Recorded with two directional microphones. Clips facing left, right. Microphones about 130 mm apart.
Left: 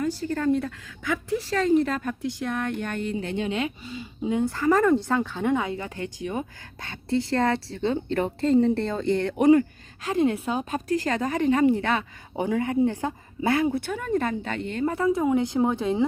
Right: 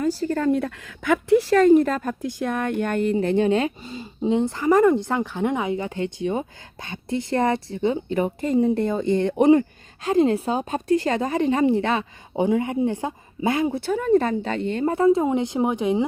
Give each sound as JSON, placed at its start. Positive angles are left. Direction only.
{"t": 0.0, "sound": "a woman's voice", "side_deg": -40}
{"t": 4.3, "sound": "a woman's voice", "side_deg": -25}
{"t": 13.8, "sound": "a woman's voice", "side_deg": -35}